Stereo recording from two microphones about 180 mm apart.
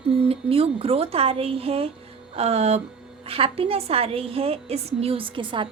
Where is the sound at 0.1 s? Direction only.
35° right (ahead or behind).